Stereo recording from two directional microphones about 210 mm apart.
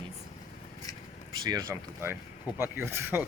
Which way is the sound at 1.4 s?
15° right (ahead or behind).